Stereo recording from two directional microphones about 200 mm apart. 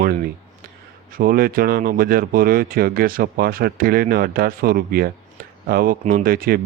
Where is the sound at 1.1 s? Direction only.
50° right (ahead or behind).